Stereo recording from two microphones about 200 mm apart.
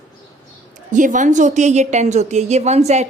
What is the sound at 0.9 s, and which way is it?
A woman's voice, 40° right (ahead or behind).